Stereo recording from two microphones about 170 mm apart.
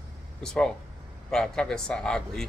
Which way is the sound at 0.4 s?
5° left (ahead or behind).